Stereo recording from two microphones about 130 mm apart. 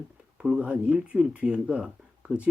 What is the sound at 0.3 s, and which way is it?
Speech, 5° right (ahead or behind).